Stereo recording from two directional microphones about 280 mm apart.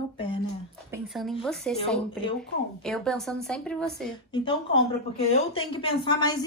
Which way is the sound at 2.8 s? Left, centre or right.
Centre.